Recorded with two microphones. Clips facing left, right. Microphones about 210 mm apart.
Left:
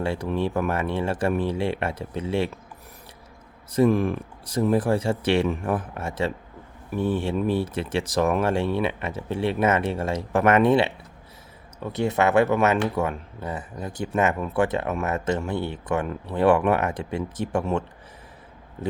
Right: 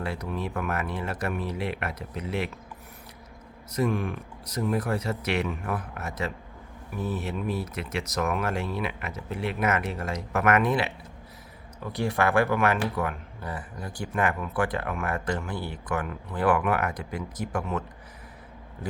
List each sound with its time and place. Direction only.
0.0 s speech: 30° left (ahead or behind)
3.7 s speech: 30° left (ahead or behind)